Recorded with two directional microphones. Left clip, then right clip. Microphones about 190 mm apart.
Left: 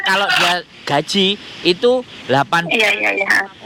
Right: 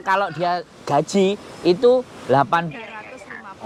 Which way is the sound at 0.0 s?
35° left (ahead or behind).